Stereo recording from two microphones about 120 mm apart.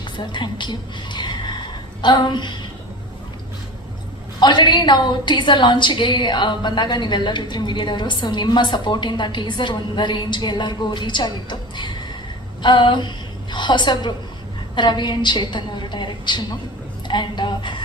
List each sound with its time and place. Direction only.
0.2 s a woman's voice: 40° left (ahead or behind)
4.4 s a woman's voice: 40° left (ahead or behind)
17.1 s a sound: 40° left (ahead or behind)